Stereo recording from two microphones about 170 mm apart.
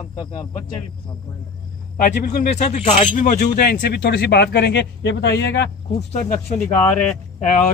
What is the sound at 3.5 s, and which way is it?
A man's voice, 70° left (ahead or behind).